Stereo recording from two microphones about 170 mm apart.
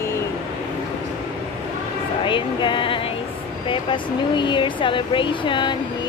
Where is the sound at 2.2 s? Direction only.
30° left (ahead or behind).